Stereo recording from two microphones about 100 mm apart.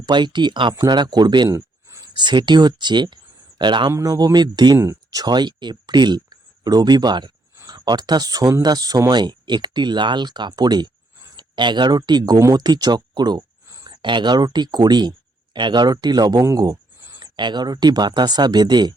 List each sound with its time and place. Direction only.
0.0 s speech: 50° right (ahead or behind)
1.5 s a sound: 30° right (ahead or behind)
2.1 s speech: 50° right (ahead or behind)
3.9 s speech: 40° right (ahead or behind)
4.8 s speech: 30° right (ahead or behind)
5.2 s speech: 45° right (ahead or behind)
17.2 s speech: 50° right (ahead or behind)